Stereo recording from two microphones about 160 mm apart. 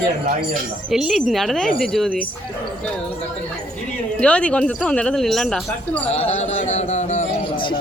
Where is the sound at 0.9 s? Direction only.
Centre (ahead or behind).